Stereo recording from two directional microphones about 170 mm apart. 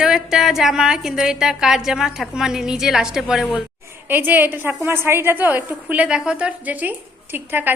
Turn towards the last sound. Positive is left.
turn(degrees=-10)  # may be behind; listen again after turning